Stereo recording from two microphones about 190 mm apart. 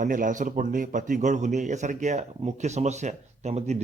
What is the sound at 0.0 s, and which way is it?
A man's voice, 45° right (ahead or behind).